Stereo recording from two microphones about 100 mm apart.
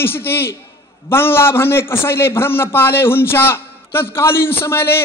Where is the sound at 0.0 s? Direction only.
25° left (ahead or behind).